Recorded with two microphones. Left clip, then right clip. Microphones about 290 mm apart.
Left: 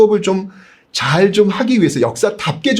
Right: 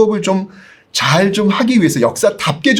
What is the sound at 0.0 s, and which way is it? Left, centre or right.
Speech, left.